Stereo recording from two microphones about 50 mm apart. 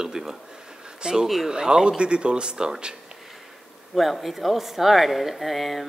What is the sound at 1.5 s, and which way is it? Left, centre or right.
Speech, centre.